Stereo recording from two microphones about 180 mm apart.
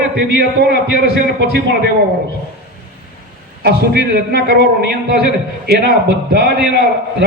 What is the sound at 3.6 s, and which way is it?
A man's voice, 65° right (ahead or behind).